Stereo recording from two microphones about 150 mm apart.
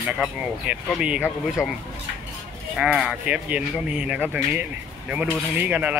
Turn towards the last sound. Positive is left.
turn(degrees=-10)  # may be behind; listen again after turning